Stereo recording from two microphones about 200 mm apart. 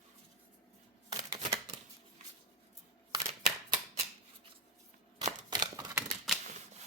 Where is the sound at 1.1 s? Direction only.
30° right (ahead or behind).